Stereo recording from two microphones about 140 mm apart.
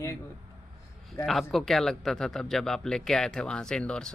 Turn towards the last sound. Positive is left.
turn(degrees=5)  # may be behind; listen again after turning